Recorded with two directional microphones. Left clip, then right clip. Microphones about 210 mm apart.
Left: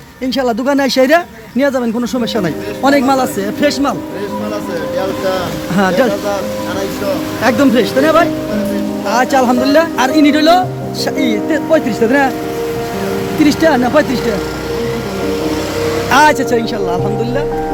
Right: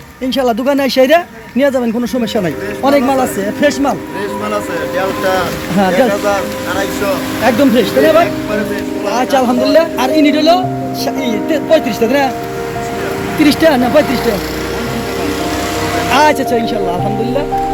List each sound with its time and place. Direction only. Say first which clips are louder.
0.3 s a man's voice: right 1 dB; 5° left (ahead or behind)
5.7 s a man's voice: right 1 dB; 5° left (ahead or behind)
7.4 s a man's voice: right 1 dB; 5° left (ahead or behind)
13.4 s a man's voice: right 1 dB; centre (ahead or behind)
16.1 s a man's voice: left 1 dB; 10° left (ahead or behind)